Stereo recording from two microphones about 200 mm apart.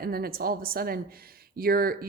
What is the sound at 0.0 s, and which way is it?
Speech, 50° right (ahead or behind).